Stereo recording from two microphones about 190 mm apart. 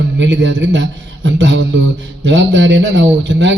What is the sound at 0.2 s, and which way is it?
A man's voice, 70° right (ahead or behind).